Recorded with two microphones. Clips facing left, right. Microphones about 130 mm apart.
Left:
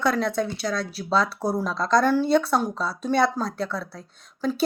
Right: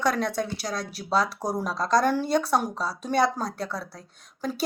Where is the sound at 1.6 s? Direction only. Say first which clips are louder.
Left 1 dB; 40° right (ahead or behind).